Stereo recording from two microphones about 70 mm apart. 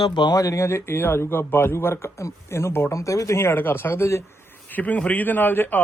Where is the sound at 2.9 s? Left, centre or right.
Left.